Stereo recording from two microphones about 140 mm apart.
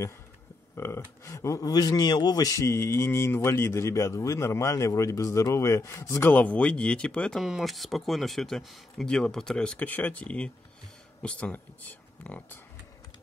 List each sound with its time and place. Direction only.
0.7 s speech: 20° left (ahead or behind)